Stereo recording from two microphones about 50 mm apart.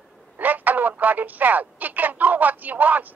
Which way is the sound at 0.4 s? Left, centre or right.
Right.